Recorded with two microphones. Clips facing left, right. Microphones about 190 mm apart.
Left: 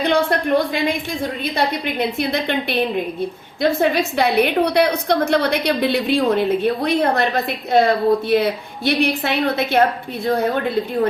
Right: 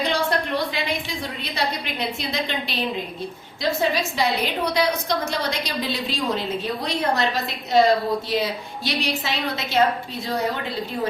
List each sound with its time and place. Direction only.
0.0 s a woman's voice: 55° left (ahead or behind)